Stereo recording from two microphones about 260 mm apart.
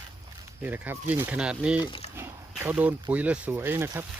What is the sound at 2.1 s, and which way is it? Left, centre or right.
Speech, centre.